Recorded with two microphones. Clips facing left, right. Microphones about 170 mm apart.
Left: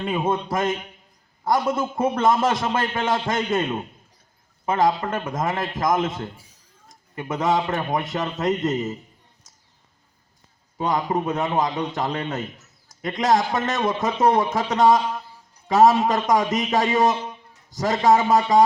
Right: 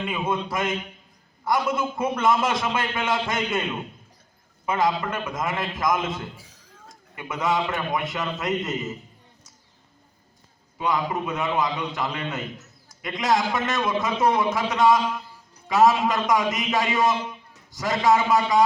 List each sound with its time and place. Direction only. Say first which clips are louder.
0.0 s a man's voice: left 3 dB; 40° left (ahead or behind)
6.3 s a sound: right 2 dB; 90° right
7.2 s a man's voice: left 3 dB; 40° left (ahead or behind)
10.8 s a man's voice: left 2 dB; 40° left (ahead or behind)